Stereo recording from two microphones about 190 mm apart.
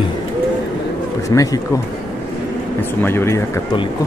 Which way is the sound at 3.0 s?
10° left (ahead or behind).